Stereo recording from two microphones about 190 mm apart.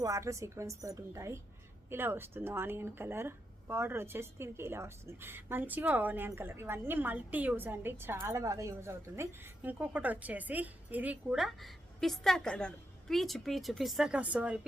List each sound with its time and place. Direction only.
0.0 s speech: 15° right (ahead or behind)